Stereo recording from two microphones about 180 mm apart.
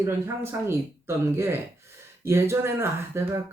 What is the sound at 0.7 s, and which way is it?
Speech, 15° right (ahead or behind).